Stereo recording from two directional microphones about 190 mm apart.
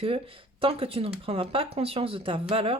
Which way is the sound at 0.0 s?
30° right (ahead or behind).